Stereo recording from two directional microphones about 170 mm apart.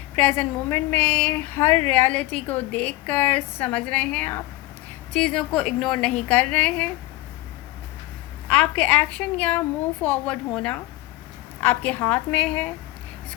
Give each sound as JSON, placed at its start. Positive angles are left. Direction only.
{"t": 0.2, "sound": "a woman's voice", "side_deg": 10}
{"t": 8.4, "sound": "a woman's voice", "side_deg": 10}